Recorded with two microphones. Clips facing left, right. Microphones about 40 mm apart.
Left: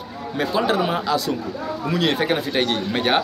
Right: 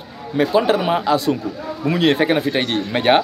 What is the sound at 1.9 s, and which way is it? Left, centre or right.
Speech, right.